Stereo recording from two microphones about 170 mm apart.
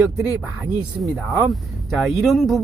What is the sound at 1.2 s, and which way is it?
Speech, centre (ahead or behind).